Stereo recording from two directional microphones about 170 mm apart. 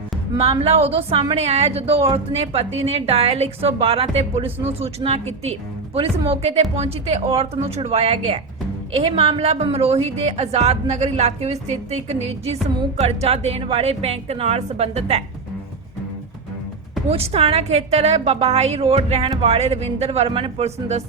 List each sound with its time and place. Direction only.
0.3 s a woman's voice: 35° right (ahead or behind)
17.1 s a woman's voice: 35° right (ahead or behind)